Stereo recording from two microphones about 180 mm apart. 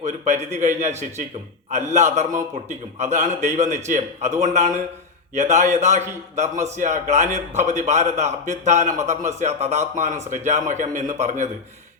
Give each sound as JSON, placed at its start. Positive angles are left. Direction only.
{"t": 0.0, "sound": "a man's voice", "side_deg": -40}